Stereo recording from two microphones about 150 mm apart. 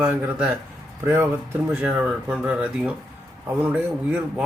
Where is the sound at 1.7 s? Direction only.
5° right (ahead or behind).